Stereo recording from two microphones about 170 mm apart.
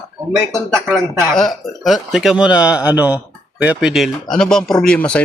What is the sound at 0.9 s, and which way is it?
A man's voice, centre (ahead or behind).